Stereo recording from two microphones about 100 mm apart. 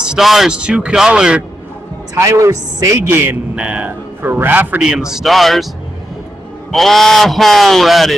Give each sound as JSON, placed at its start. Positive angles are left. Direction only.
{"t": 0.0, "sound": "a man's voice", "side_deg": -5}
{"t": 2.1, "sound": "a man's voice", "side_deg": -30}
{"t": 3.5, "sound": "a man's voice", "side_deg": -10}
{"t": 4.8, "sound": "speech", "side_deg": -5}
{"t": 6.7, "sound": "speech", "side_deg": 0}